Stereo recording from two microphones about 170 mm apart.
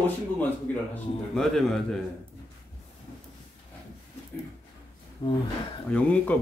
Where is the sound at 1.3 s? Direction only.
Centre (ahead or behind).